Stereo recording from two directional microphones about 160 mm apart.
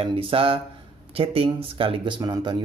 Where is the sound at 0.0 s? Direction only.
35° right (ahead or behind).